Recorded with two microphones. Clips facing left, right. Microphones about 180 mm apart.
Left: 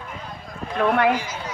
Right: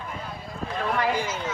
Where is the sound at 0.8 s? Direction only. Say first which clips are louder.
Left 7 dB; 60° left (ahead or behind).